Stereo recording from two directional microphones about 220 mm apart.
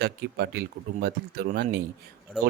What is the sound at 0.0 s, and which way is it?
A man's voice, 45° right (ahead or behind).